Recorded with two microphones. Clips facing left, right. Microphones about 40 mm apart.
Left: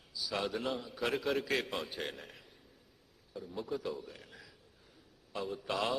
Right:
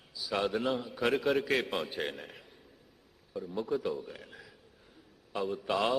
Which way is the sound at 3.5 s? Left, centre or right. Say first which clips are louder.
Right 5 dB; centre.